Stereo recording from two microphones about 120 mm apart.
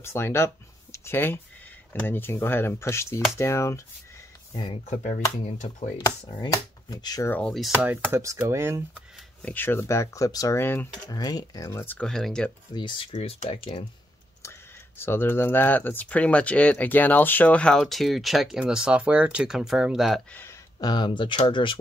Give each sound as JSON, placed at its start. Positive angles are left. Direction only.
{"t": 0.0, "sound": "speech", "side_deg": 20}
{"t": 4.5, "sound": "speech", "side_deg": 40}
{"t": 4.8, "sound": "speech", "side_deg": 75}
{"t": 6.4, "sound": "speech", "side_deg": 35}
{"t": 7.2, "sound": "speech", "side_deg": 10}
{"t": 7.7, "sound": "speech", "side_deg": -15}
{"t": 9.4, "sound": "speech", "side_deg": 15}
{"t": 11.1, "sound": "speech", "side_deg": 35}
{"t": 11.8, "sound": "speech", "side_deg": 15}
{"t": 12.1, "sound": "speech", "side_deg": 5}
{"t": 13.1, "sound": "speech", "side_deg": 55}
{"t": 15.0, "sound": "speech", "side_deg": 20}
{"t": 20.8, "sound": "speech", "side_deg": 35}